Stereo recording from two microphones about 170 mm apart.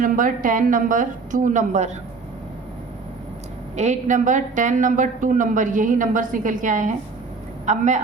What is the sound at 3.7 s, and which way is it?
A woman's voice, 45° right (ahead or behind).